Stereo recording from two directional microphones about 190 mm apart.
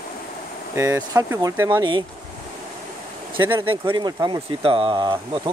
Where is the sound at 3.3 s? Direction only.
90° right.